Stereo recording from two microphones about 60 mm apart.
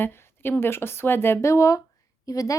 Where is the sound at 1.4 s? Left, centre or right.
Left.